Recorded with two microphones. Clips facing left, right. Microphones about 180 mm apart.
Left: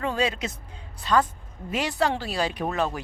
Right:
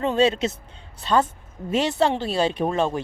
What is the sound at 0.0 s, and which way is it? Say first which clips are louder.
Speech: right 6 dB; 25° right (ahead or behind).